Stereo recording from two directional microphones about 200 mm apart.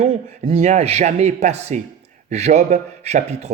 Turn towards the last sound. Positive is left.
turn(degrees=-35)  # may be behind; listen again after turning